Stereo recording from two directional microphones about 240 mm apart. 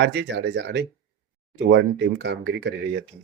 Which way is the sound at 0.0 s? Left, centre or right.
Right.